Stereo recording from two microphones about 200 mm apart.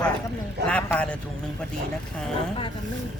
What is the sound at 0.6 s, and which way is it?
Speech, 5° left (ahead or behind).